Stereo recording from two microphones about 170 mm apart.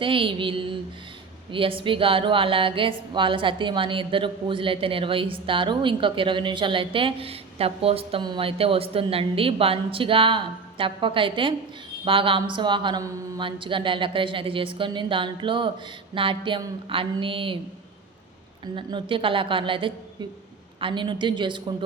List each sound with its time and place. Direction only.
0.0 s speech: 30° right (ahead or behind)
18.8 s speech: 30° right (ahead or behind)